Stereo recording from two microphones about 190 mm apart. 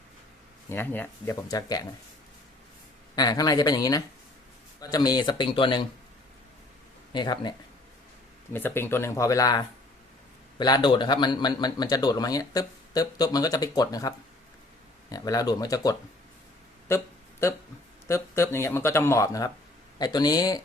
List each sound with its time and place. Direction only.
0.7 s speech: 10° left (ahead or behind)
3.2 s a man's voice: 20° left (ahead or behind)
7.1 s a man's voice: 25° left (ahead or behind)
8.5 s a man's voice: 10° left (ahead or behind)
15.1 s a man's voice: 20° left (ahead or behind)
18.1 s a man's voice: 15° left (ahead or behind)